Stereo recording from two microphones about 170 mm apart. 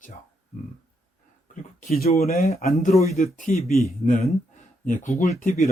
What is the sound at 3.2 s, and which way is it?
Speech, 45° left (ahead or behind).